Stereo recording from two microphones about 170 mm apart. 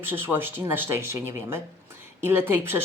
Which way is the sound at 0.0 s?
10° right (ahead or behind).